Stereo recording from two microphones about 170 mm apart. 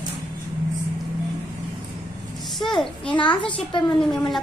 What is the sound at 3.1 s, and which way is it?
Speech, 30° left (ahead or behind).